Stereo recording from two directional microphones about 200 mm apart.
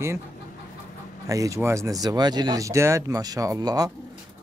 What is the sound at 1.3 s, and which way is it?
Speech, 15° right (ahead or behind).